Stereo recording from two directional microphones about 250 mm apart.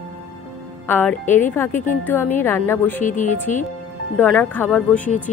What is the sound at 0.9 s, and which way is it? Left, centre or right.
A woman's voice, centre.